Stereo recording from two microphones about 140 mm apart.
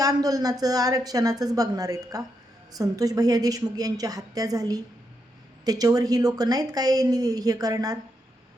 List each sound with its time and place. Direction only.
0.0 s a woman's voice: 25° right (ahead or behind)